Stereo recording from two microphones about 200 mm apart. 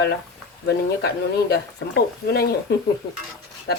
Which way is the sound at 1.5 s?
50° left (ahead or behind).